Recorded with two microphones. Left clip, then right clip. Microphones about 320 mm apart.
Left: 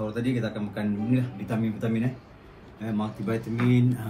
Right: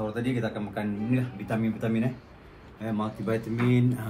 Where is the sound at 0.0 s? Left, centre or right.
Centre.